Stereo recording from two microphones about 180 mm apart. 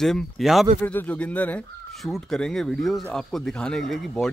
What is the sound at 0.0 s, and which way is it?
Speech, centre (ahead or behind).